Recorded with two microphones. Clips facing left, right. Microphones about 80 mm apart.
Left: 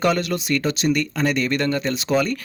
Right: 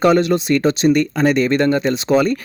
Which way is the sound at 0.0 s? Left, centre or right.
Right.